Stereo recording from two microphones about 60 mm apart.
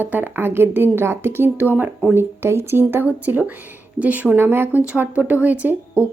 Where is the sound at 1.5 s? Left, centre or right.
Right.